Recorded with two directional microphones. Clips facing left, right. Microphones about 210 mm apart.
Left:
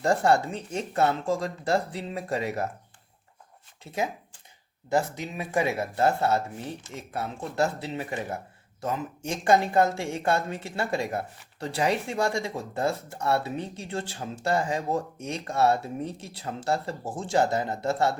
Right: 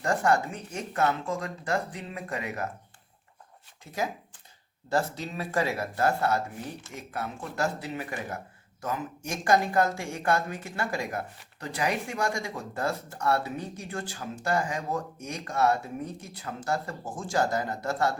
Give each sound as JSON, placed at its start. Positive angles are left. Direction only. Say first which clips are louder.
{"t": 0.0, "sound": "speech", "louder": "left 3 dB", "side_deg": 30}
{"t": 3.9, "sound": "speech", "louder": "left 2 dB", "side_deg": 25}